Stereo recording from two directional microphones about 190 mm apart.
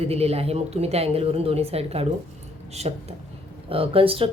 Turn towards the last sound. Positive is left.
turn(degrees=-30)  # may be behind; listen again after turning